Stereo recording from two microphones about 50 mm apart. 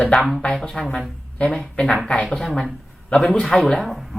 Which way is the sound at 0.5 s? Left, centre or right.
Centre.